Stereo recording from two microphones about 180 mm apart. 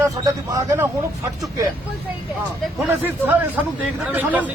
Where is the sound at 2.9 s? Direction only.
10° right (ahead or behind).